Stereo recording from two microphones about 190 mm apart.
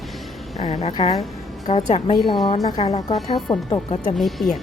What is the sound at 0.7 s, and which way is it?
Speech, 35° left (ahead or behind).